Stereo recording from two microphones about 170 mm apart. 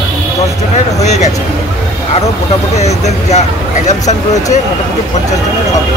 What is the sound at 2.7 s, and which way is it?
Speech, 40° left (ahead or behind).